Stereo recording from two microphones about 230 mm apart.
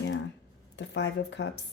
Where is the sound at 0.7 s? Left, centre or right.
Left.